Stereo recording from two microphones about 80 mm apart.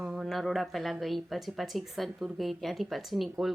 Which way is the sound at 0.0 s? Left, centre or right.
Centre.